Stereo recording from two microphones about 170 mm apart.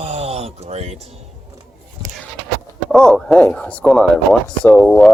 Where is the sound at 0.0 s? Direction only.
40° right (ahead or behind).